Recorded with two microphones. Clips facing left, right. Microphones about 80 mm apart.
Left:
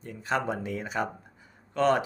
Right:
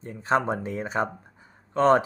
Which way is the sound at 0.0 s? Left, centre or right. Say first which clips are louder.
Right 5 dB; right.